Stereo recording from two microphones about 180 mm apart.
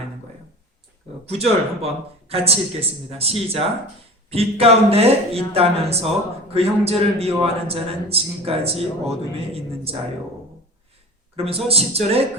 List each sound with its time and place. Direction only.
1.2 s speech: 35° right (ahead or behind)
11.3 s speech: 35° right (ahead or behind)